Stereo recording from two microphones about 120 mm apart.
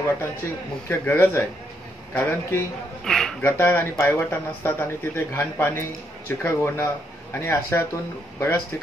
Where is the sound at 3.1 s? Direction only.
5° left (ahead or behind).